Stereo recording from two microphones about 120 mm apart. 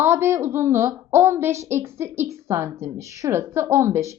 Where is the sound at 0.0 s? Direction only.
20° right (ahead or behind).